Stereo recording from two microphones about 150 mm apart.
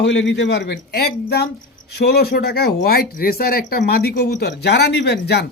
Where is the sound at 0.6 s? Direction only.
90° left.